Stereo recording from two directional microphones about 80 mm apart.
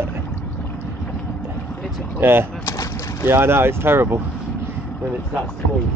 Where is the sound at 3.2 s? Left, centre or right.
Right.